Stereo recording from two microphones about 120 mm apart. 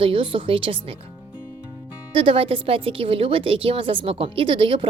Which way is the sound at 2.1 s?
50° right (ahead or behind).